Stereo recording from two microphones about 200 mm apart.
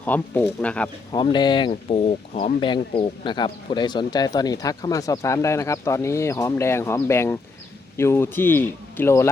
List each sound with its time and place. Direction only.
0.0 s a man's voice: 10° left (ahead or behind)
1.1 s a man's voice: 20° left (ahead or behind)